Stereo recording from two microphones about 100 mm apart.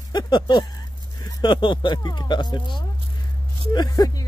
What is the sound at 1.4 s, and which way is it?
Speech, 50° left (ahead or behind).